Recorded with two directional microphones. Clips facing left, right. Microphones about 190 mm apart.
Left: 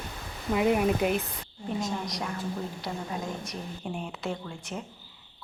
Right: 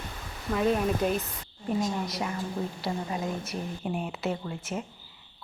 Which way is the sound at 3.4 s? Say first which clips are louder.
Right 3 dB; 5° right (ahead or behind).